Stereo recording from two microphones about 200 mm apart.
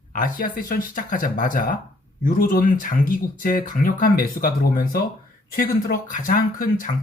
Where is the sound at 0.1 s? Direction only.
45° left (ahead or behind).